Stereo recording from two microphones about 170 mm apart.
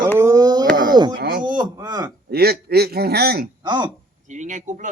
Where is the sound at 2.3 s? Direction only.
65° right (ahead or behind).